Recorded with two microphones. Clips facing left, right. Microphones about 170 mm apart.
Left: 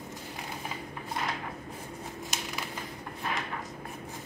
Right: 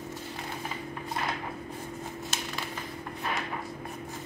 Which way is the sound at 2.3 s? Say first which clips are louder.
Even; 15° left (ahead or behind).